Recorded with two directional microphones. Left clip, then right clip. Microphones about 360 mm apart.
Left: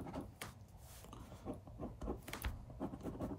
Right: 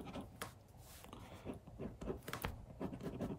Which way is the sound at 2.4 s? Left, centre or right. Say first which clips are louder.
Right 4 dB; centre.